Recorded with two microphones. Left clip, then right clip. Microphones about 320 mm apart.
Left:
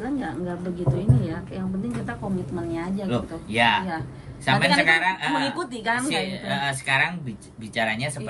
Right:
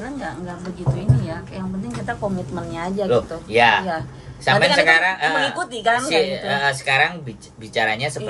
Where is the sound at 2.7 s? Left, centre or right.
Centre.